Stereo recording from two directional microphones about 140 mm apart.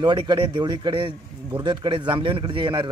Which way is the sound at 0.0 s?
30° right (ahead or behind).